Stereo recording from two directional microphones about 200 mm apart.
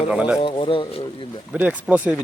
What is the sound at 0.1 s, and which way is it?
Speech, 5° right (ahead or behind).